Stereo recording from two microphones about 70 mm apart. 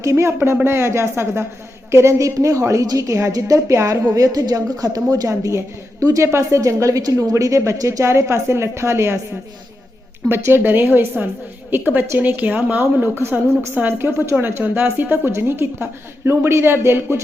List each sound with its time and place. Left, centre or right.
0.0 s a woman's voice: right
2.8 s a woman's voice: right
4.1 s speech: right
5.3 s a woman's voice: right
10.2 s a woman's voice: right